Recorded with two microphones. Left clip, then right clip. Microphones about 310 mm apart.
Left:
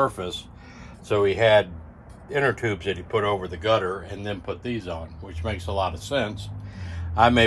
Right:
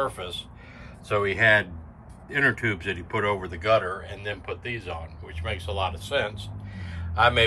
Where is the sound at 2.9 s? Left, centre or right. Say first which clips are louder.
Left 5 dB; centre.